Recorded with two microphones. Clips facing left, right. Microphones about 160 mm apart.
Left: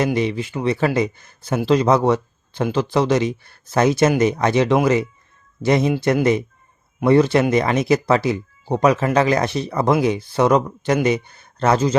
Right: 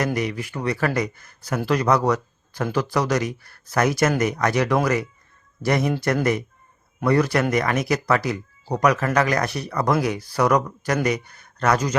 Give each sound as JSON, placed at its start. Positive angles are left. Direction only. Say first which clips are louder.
{"t": 0.0, "sound": "speech", "louder": "left 4 dB", "side_deg": 25}